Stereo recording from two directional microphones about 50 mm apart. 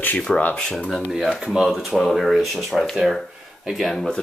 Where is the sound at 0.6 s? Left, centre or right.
Centre.